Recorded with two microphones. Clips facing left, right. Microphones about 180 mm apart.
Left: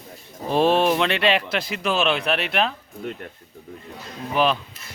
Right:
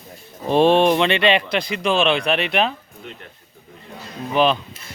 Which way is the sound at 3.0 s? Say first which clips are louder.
Left 6 dB; 45° left (ahead or behind).